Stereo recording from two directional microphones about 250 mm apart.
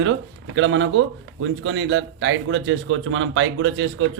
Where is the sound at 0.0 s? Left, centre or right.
Right.